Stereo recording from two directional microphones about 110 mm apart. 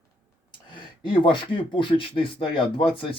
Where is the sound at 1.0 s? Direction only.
45° left (ahead or behind).